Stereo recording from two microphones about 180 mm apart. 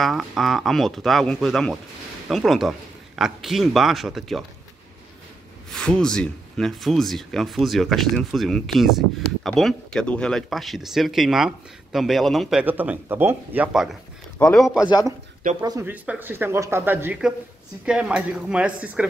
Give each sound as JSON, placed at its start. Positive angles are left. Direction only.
{"t": 0.0, "sound": "speech", "side_deg": 0}
{"t": 5.7, "sound": "speech", "side_deg": 5}
{"t": 14.4, "sound": "speech", "side_deg": 0}
{"t": 14.8, "sound": "a man's voice", "side_deg": 20}
{"t": 15.4, "sound": "speech", "side_deg": -50}
{"t": 15.8, "sound": "speech", "side_deg": -10}